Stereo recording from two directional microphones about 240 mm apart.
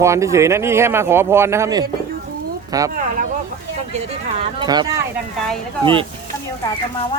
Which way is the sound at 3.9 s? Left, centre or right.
Right.